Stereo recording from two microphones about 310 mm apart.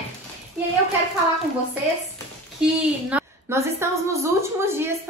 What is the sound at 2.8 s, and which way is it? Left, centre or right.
A woman's voice, centre.